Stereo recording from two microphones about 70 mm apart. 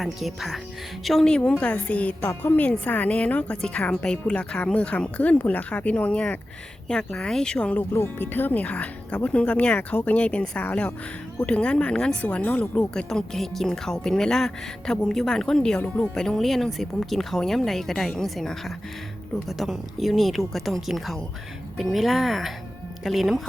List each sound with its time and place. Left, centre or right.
0.0 s speech: centre
1.4 s speech: centre
8.0 s speech: left
12.9 s speech: centre